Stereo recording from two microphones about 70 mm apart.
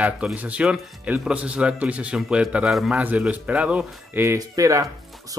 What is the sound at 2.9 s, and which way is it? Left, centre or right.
Speech, right.